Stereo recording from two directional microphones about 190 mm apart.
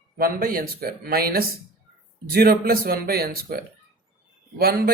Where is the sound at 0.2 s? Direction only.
50° right (ahead or behind).